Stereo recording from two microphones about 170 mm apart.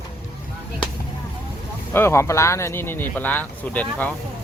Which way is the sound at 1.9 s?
15° left (ahead or behind).